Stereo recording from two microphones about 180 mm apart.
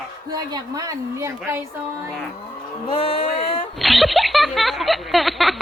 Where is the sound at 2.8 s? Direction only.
30° left (ahead or behind).